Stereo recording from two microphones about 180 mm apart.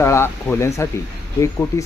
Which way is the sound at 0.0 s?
15° left (ahead or behind).